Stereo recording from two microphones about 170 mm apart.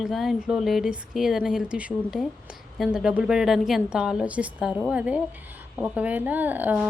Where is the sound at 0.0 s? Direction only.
Centre (ahead or behind).